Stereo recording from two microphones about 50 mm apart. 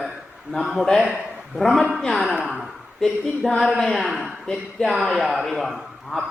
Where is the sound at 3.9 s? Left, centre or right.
Centre.